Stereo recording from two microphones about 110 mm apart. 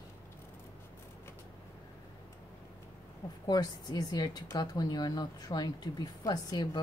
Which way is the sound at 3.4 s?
40° left (ahead or behind).